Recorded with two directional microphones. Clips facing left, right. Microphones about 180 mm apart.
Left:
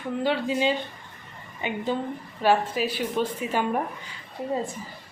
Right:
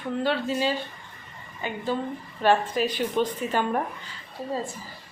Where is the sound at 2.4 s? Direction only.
5° left (ahead or behind).